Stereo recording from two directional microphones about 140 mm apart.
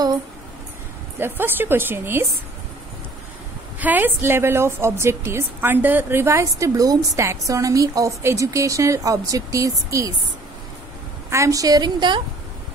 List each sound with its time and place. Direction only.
1.2 s a woman's voice: 15° right (ahead or behind)
3.8 s a woman's voice: 15° right (ahead or behind)
11.2 s a woman's voice: 20° right (ahead or behind)